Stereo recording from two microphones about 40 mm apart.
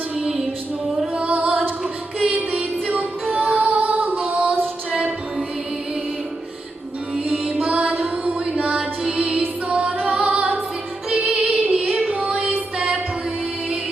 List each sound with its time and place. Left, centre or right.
0.2 s music: centre
1.2 s female singing: right
1.8 s a sound: right
2.3 s music: right
7.3 s music: right
8.7 s music: centre
9.1 s music: right
10.1 s singing: right
11.1 s music: right